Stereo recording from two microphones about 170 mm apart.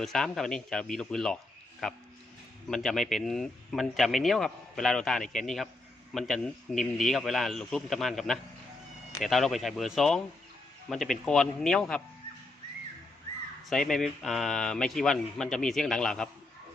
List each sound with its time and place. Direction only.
0.0 s speech: centre (ahead or behind)
13.7 s speech: centre (ahead or behind)